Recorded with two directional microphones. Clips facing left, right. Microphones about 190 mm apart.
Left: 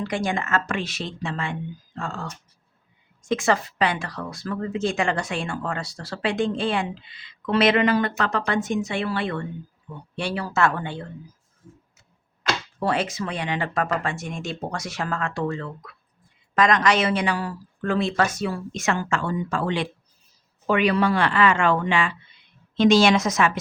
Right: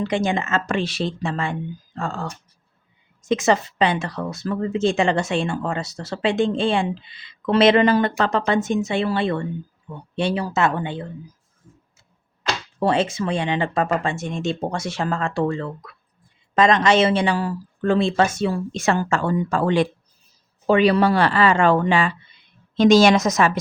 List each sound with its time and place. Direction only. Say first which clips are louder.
0.0 s speech: right 4 dB; 25° right (ahead or behind)
3.2 s speech: right 3 dB; 20° right (ahead or behind)
12.4 s speech: right 3 dB; 25° right (ahead or behind); by 19.9 s 45° right (ahead or behind)
20.7 s a woman's voice: right 4 dB; 30° right (ahead or behind)